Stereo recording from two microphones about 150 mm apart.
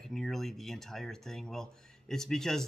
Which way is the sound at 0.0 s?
Centre (ahead or behind).